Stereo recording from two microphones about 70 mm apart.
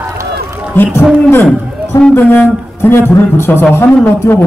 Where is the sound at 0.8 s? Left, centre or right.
Left.